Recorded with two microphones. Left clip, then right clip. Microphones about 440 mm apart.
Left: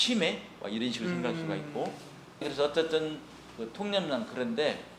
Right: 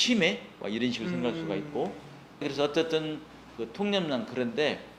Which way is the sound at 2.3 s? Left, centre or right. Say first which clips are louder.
Right 1 dB; right.